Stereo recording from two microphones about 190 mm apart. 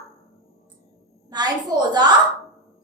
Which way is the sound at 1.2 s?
20° right (ahead or behind).